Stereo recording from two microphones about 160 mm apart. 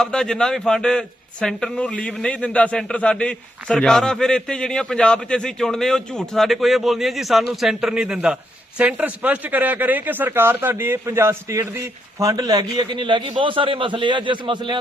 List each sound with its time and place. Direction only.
0.0 s a man's voice: 5° left (ahead or behind); by 14.8 s 30° right (ahead or behind)